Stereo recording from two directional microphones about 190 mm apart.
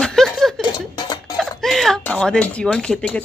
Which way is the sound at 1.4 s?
Centre (ahead or behind).